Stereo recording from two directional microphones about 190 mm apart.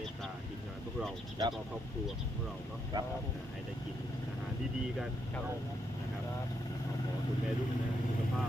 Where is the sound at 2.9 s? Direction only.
20° right (ahead or behind).